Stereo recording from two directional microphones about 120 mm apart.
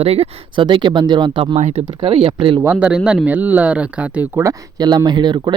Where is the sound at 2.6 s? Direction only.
15° right (ahead or behind).